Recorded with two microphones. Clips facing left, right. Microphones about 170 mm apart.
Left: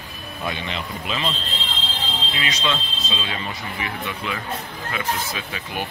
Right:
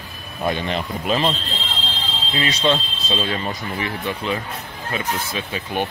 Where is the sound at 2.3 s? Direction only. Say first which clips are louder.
Right 7 dB; 30° right (ahead or behind).